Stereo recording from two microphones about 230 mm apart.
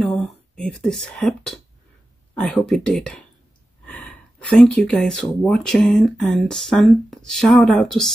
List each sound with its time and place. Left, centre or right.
0.0 s speech: centre
3.8 s gasp: centre
4.6 s speech: centre